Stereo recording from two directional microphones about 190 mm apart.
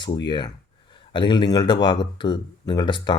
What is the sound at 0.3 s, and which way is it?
Speech, 25° left (ahead or behind).